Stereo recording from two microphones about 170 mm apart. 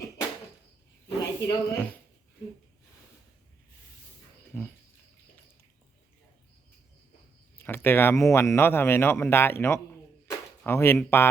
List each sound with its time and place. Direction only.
1.0 s a sound: 20° left (ahead or behind)
4.5 s pig: 10° left (ahead or behind)
7.6 s speech: 15° left (ahead or behind)